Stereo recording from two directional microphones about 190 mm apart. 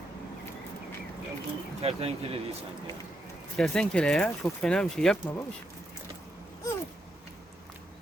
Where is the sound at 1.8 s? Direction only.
30° right (ahead or behind).